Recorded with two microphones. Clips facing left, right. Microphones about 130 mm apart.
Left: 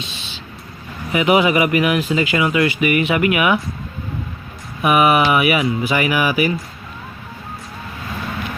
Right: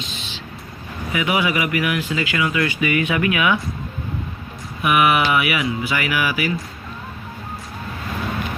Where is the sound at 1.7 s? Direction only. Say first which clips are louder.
Left 5 dB; 20° left (ahead or behind).